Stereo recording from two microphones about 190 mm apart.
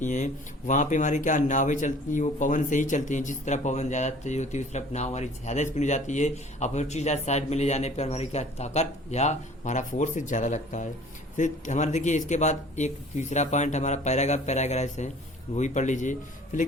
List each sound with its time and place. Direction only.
0.0 s speech: 40° left (ahead or behind)